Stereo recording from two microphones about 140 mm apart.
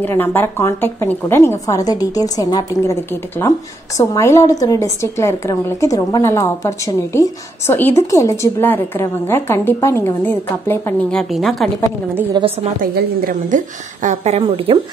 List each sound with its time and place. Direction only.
0.0 s a woman's voice: 15° left (ahead or behind)
11.1 s a woman's voice: centre (ahead or behind)
12.4 s a woman's voice: 30° right (ahead or behind)
12.8 s a woman's voice: 90° right
14.0 s speech: 50° right (ahead or behind)
14.7 s a woman's voice: 40° right (ahead or behind)